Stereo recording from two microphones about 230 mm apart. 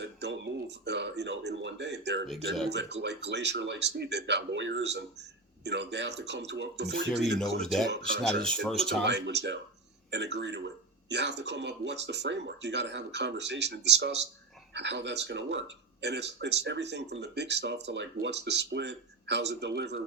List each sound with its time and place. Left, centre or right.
0.0 s a sound: right
2.6 s speech: right
7.6 s speech: centre
7.9 s speech: right